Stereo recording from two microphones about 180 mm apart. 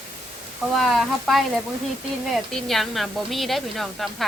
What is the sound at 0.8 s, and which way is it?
A woman's voice, centre (ahead or behind).